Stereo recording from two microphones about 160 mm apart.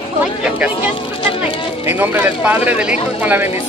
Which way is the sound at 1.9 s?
15° right (ahead or behind).